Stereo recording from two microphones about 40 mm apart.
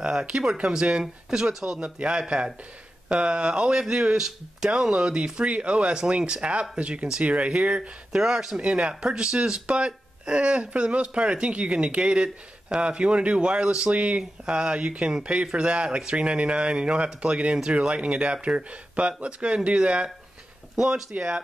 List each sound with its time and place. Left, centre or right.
0.1 s speech: right
1.0 s speech: centre; by 7.9 s right
8.1 s speech: centre
8.6 s speech: right
9.0 s speech: centre
20.7 s speech: centre